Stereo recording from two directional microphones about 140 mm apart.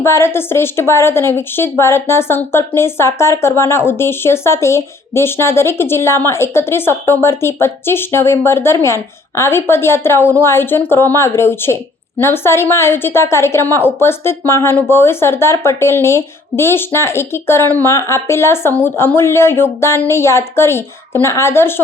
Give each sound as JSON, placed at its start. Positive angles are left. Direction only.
{"t": 0.0, "sound": "a woman's voice", "side_deg": 20}